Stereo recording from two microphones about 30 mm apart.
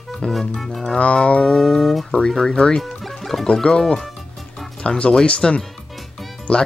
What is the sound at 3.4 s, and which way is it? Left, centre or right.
Speech, left.